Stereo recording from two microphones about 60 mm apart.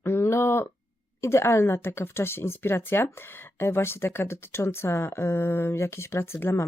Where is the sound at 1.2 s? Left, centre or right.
Left.